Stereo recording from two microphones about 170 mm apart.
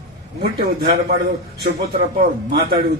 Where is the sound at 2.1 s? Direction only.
60° right (ahead or behind).